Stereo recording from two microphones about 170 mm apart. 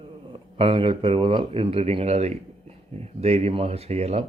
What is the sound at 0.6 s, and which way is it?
Speech, 35° right (ahead or behind).